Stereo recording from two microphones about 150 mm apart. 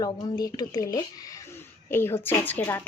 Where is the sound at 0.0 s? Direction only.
25° left (ahead or behind).